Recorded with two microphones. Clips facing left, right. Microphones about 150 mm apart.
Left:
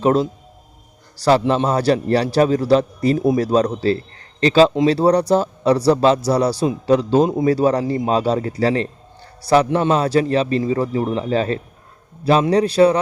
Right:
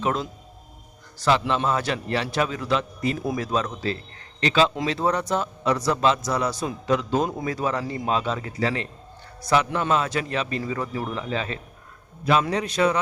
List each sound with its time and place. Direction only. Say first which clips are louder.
0.0 s a man's voice: left 9 dB; 35° left (ahead or behind)